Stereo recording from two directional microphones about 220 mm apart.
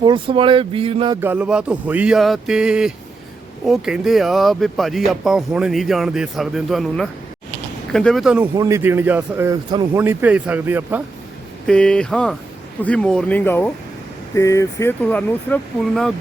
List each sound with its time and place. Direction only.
0.0 s speech: 20° right (ahead or behind)
1.2 s speech: 5° right (ahead or behind)
8.5 s a man's voice: 15° right (ahead or behind)
11.6 s speech: 5° left (ahead or behind)